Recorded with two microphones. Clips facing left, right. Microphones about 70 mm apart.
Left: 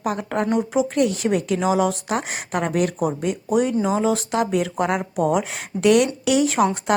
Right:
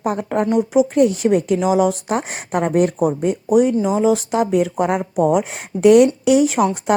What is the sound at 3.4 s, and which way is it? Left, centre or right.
Speech, centre.